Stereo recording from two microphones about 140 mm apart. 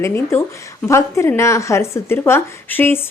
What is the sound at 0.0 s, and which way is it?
A woman's voice, 20° left (ahead or behind).